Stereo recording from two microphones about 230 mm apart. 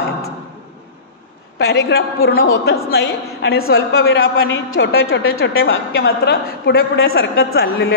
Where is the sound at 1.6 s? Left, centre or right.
Left.